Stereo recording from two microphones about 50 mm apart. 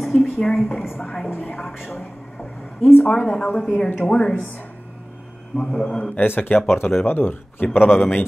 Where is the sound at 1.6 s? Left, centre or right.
Centre.